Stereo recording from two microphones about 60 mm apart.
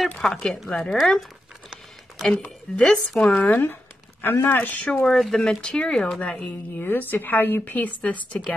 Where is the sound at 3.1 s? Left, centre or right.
Left.